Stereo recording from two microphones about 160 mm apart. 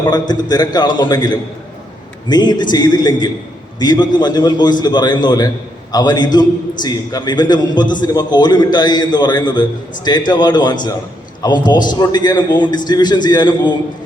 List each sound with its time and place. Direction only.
0.1 s a man's voice: 25° left (ahead or behind)